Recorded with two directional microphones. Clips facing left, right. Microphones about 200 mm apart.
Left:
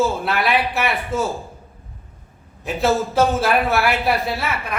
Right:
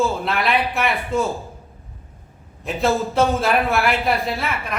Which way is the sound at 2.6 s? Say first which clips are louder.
Left 1 dB; centre (ahead or behind).